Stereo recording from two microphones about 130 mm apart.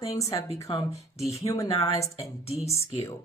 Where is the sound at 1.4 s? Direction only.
25° left (ahead or behind).